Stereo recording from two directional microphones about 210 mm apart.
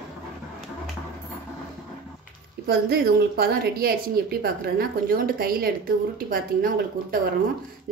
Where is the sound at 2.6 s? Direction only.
45° right (ahead or behind).